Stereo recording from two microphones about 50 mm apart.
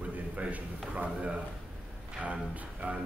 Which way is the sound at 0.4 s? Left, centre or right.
Right.